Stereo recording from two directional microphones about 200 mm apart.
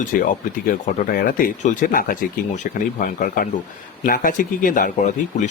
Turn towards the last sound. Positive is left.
turn(degrees=40)  # may be behind; listen again after turning